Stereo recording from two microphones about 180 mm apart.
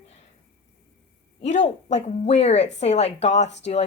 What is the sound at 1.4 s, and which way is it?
A woman's voice, 40° left (ahead or behind).